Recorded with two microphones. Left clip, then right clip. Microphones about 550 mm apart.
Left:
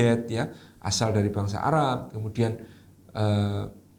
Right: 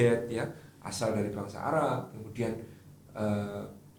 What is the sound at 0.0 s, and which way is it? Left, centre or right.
Speech, left.